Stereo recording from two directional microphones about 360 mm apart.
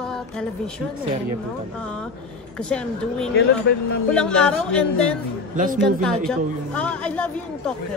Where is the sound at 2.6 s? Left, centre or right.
Centre.